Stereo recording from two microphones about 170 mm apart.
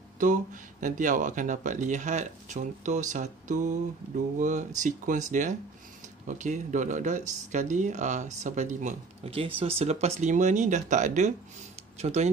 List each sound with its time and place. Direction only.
0.2 s speech: 50° right (ahead or behind)